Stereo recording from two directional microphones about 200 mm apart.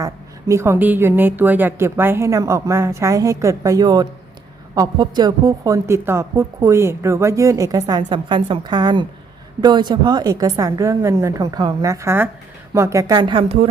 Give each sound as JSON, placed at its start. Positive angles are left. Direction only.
{"t": 0.0, "sound": "a woman's voice", "side_deg": -15}